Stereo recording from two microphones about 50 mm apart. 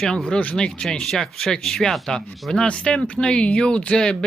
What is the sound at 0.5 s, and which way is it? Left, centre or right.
Speech, centre.